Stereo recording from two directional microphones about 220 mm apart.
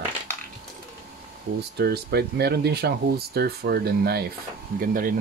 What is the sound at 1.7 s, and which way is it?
Speech, 45° right (ahead or behind).